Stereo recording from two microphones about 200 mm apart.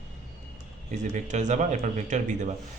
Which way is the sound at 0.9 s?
35° right (ahead or behind).